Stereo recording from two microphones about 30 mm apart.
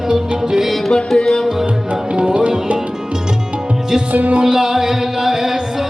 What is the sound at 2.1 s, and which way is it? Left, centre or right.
Music, right.